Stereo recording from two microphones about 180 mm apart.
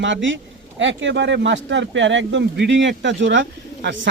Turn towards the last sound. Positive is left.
turn(degrees=-85)